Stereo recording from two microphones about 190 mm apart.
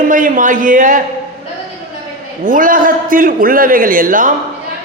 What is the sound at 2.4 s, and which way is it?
A man's voice, 45° right (ahead or behind).